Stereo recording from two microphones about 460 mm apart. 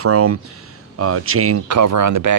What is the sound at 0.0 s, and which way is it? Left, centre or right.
Speech, right.